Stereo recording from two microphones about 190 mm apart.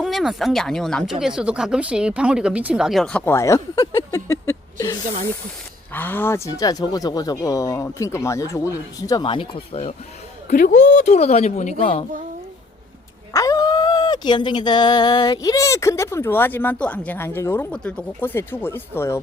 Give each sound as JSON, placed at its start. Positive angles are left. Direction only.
{"t": 0.0, "sound": "speech", "side_deg": 0}
{"t": 10.5, "sound": "speech", "side_deg": 45}
{"t": 13.3, "sound": "speech", "side_deg": 20}